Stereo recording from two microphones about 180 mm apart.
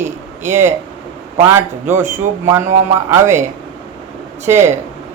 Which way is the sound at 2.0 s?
45° right (ahead or behind).